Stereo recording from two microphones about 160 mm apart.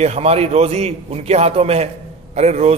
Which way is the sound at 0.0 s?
40° right (ahead or behind).